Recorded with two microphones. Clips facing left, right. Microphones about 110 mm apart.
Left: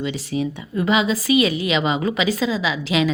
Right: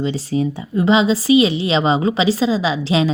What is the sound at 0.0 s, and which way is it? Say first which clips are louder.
A woman's voice: right 4 dB; 35° right (ahead or behind).